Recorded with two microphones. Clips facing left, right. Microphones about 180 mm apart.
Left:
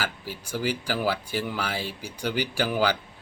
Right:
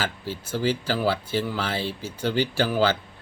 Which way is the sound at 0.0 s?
10° left (ahead or behind).